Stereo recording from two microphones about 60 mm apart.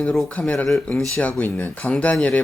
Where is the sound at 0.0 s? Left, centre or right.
Left.